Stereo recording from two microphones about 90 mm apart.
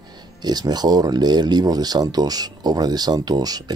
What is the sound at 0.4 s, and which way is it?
Speech, 50° right (ahead or behind).